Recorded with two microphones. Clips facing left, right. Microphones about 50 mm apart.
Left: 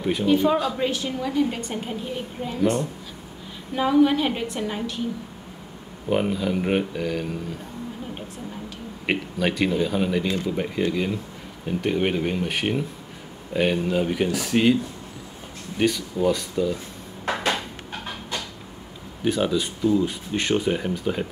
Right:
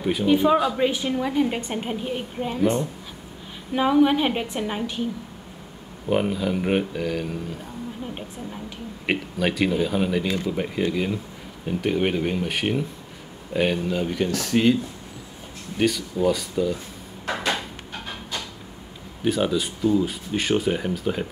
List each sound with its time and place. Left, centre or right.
0.0 s a woman's voice: centre
6.0 s speech: centre
9.0 s speech: centre
13.8 s speech: centre
15.8 s speech: centre
19.2 s speech: centre